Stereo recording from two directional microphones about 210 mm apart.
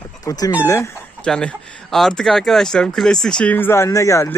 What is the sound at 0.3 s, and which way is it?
Speech, 15° left (ahead or behind).